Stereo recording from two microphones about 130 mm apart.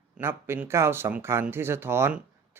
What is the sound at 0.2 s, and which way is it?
Speech, 20° right (ahead or behind).